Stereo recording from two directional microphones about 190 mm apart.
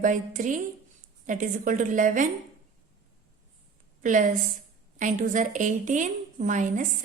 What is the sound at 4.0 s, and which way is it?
A woman's voice, 40° right (ahead or behind).